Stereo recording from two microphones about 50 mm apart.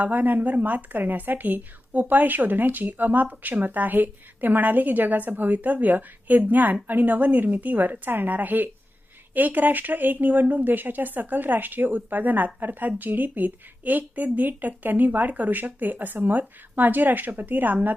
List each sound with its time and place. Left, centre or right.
0.0 s a woman's voice: right